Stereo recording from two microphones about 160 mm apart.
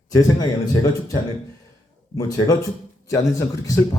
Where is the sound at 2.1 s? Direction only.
20° left (ahead or behind).